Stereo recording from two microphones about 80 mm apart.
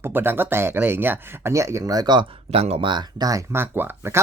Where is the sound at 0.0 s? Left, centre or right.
Right.